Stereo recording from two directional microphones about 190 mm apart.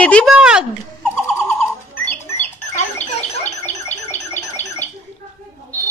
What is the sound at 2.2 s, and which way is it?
Bird, 35° left (ahead or behind).